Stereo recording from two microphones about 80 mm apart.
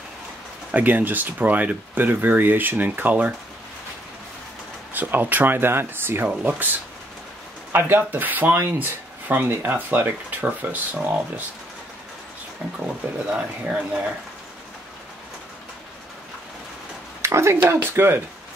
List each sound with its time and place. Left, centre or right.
0.7 s speech: right
4.9 s speech: right
7.7 s speech: right
13.3 s speech: centre
17.2 s speech: right